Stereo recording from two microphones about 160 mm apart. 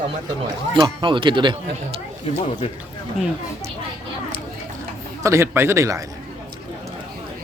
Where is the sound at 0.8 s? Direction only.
30° right (ahead or behind).